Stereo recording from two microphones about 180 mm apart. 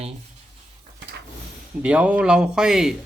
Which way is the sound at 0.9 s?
70° right (ahead or behind).